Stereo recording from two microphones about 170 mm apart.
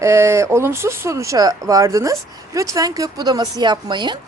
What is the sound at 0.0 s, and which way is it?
A woman's voice, 15° right (ahead or behind).